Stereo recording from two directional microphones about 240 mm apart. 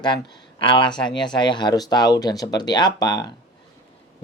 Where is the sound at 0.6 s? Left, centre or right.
Centre.